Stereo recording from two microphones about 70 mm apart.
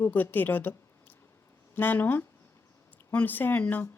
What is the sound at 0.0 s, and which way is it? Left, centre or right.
A woman's voice, left.